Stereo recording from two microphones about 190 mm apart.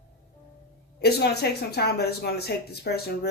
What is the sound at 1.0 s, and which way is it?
Speech, 60° left (ahead or behind).